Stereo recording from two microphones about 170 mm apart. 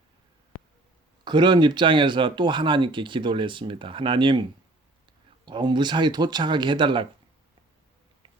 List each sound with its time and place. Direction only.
1.2 s speech: 25° right (ahead or behind)
5.5 s speech: 25° right (ahead or behind)